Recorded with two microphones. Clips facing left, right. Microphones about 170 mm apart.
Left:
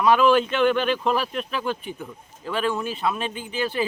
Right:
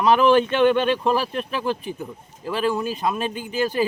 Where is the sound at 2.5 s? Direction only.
35° right (ahead or behind).